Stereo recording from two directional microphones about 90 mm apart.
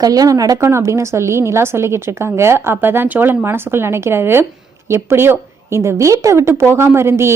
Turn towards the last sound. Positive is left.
turn(degrees=-30)  # may be behind; listen again after turning